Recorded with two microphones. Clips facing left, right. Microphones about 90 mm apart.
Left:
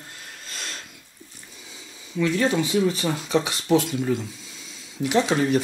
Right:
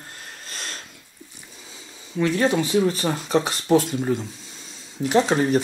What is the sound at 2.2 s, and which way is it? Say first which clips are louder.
Speech: right 1 dB; 40° right (ahead or behind).